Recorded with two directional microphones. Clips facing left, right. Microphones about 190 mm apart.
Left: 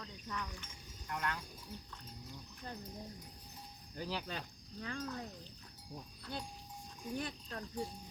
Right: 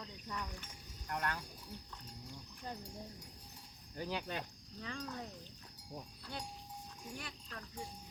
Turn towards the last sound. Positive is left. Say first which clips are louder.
# left 6 dB
turn(degrees=35)  # may be behind; listen again after turning